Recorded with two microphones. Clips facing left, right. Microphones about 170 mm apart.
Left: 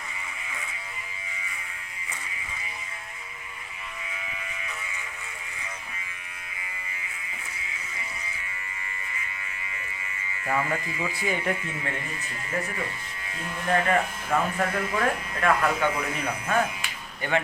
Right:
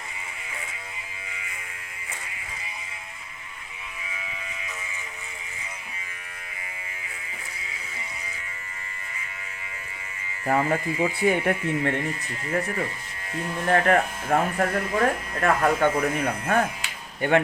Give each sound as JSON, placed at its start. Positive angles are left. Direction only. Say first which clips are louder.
{"t": 10.4, "sound": "speech", "louder": "right 5 dB", "side_deg": -40}
{"t": 13.7, "sound": "speech", "louder": "right 3 dB", "side_deg": -45}